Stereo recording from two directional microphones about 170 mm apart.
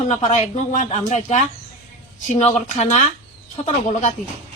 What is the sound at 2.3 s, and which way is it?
Speech, 40° left (ahead or behind).